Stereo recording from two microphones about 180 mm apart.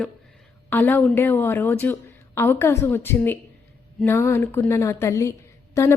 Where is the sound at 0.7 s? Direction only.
10° left (ahead or behind).